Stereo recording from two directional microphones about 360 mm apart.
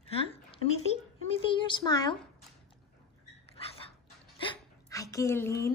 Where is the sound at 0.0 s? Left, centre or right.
Centre.